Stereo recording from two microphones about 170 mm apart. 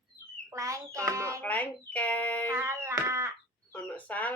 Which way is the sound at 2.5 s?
15° right (ahead or behind).